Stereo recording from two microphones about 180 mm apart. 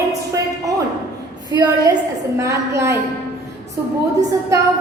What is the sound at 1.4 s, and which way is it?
A woman's voice, 25° right (ahead or behind).